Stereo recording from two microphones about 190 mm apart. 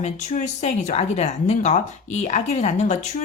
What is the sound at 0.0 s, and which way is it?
A woman's voice, 35° left (ahead or behind).